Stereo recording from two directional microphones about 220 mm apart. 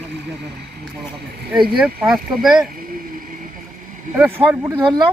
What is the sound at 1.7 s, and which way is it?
Speech, 5° right (ahead or behind).